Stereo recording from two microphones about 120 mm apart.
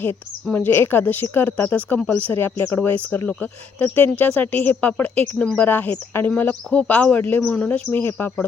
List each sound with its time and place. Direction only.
0.5 s speech: 15° left (ahead or behind)